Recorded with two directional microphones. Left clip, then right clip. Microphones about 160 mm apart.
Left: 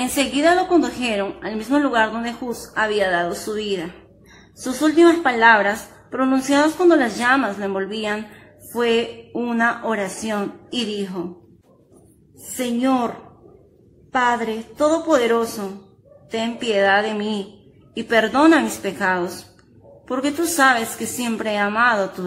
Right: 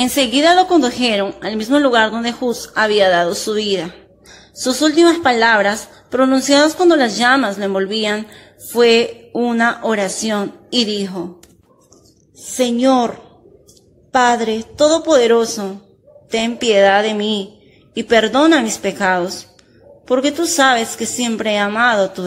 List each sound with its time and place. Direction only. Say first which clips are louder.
0.0 s a woman's voice: right 5 dB; 35° right (ahead or behind)
9.3 s speech: right 7 dB; 20° right (ahead or behind)
9.6 s a woman's voice: right 3 dB; 35° right (ahead or behind)
12.5 s a woman's voice: right 7 dB; 30° right (ahead or behind)
14.8 s a woman's voice: right 5 dB; 20° right (ahead or behind)
15.1 s a woman's voice: right 6 dB; 35° right (ahead or behind)